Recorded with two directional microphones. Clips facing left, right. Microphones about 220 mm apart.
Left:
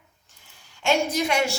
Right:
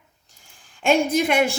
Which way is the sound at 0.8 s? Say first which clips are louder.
Right 4 dB; 55° right (ahead or behind).